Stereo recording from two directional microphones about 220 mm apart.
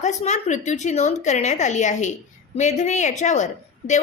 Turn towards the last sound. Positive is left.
turn(degrees=35)  # may be behind; listen again after turning